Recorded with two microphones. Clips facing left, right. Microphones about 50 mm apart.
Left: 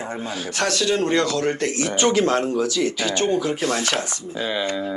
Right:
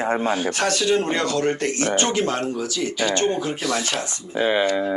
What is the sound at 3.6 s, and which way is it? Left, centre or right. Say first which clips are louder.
Chopping: left 2 dB; left.